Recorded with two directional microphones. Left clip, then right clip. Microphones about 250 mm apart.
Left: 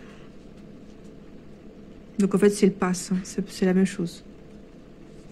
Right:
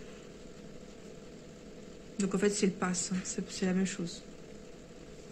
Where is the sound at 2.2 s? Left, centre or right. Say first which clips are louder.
Left 10 dB; left.